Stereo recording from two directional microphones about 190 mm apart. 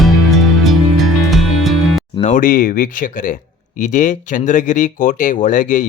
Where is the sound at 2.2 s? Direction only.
45° left (ahead or behind).